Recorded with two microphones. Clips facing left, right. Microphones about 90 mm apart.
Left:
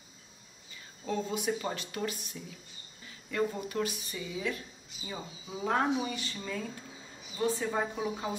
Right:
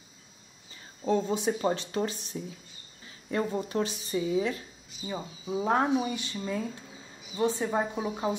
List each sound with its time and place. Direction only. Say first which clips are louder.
1.0 s a woman's voice: right 6 dB; 30° right (ahead or behind)
5.0 s speech: right 6 dB; 15° right (ahead or behind)
5.6 s speech: right 3 dB; 25° right (ahead or behind)
7.3 s speech: right 3 dB; 25° right (ahead or behind)